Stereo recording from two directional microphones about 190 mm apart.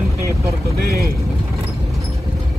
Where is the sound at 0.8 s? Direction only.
55° right (ahead or behind).